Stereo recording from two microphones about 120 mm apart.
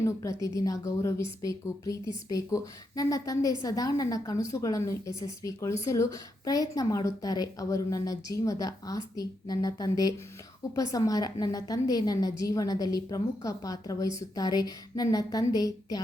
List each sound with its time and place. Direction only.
0.0 s a woman's voice: 25° left (ahead or behind)